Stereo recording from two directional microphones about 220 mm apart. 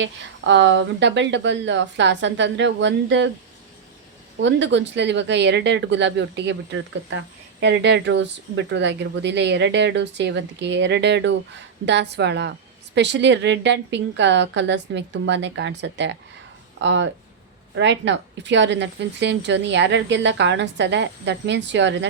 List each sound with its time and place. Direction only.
0.0 s speech: 55° right (ahead or behind)
4.4 s speech: 55° right (ahead or behind)